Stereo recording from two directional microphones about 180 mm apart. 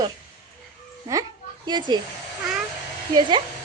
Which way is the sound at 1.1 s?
20° right (ahead or behind).